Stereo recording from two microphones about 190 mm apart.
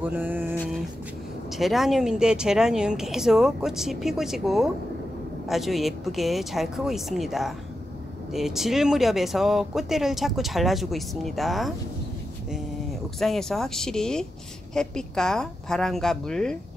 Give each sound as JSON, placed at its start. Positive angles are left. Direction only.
{"t": 0.0, "sound": "a sound", "side_deg": -10}
{"t": 1.6, "sound": "speech", "side_deg": 0}
{"t": 13.2, "sound": "speech", "side_deg": 0}